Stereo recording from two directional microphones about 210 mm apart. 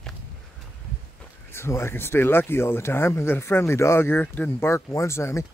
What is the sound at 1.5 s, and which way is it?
Speech, 10° left (ahead or behind).